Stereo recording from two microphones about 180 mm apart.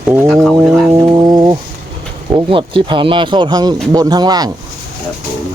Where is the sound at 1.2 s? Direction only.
20° right (ahead or behind).